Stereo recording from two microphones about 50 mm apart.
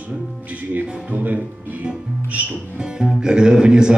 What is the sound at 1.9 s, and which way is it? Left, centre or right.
Speech, right.